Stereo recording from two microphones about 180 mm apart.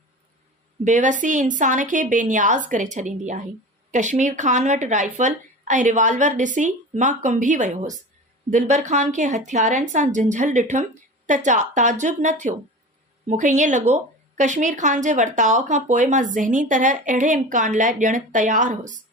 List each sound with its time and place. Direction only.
0.9 s a woman's voice: 45° right (ahead or behind)